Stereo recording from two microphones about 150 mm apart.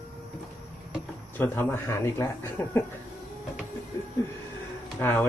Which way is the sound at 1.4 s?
15° left (ahead or behind).